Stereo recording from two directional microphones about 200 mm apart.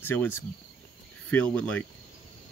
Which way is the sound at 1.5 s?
5° left (ahead or behind).